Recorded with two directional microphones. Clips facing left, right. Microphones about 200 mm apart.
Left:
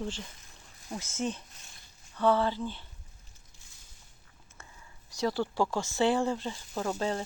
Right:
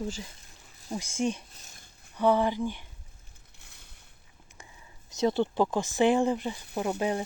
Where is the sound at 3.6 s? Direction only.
65° right (ahead or behind).